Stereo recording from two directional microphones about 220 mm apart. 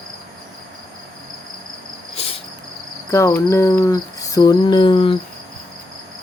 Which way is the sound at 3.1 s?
15° left (ahead or behind).